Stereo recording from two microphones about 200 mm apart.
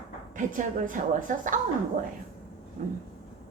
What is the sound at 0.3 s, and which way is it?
A woman's voice, 40° right (ahead or behind).